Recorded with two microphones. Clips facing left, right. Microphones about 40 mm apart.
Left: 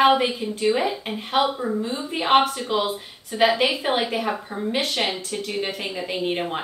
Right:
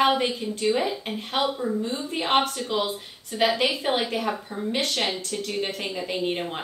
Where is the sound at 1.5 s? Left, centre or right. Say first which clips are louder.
Left 2 dB; left.